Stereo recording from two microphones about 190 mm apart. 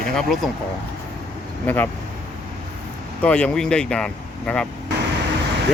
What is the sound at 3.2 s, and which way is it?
Speech, 5° left (ahead or behind).